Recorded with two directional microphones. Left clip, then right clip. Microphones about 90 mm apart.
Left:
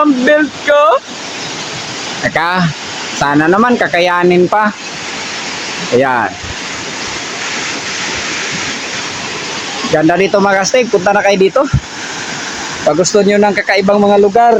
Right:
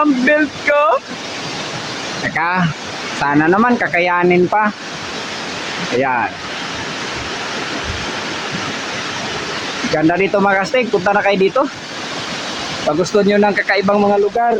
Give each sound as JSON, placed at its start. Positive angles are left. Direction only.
{"t": 0.0, "sound": "speech", "side_deg": 30}
{"t": 2.3, "sound": "speech", "side_deg": 40}
{"t": 6.0, "sound": "speech", "side_deg": 45}
{"t": 9.9, "sound": "speech", "side_deg": 40}
{"t": 12.9, "sound": "speech", "side_deg": 30}
{"t": 14.1, "sound": "speech", "side_deg": 90}